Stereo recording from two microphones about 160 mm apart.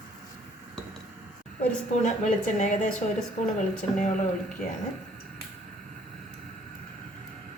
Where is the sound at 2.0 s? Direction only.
50° left (ahead or behind).